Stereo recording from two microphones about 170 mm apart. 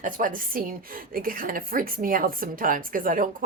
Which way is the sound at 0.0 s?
50° right (ahead or behind).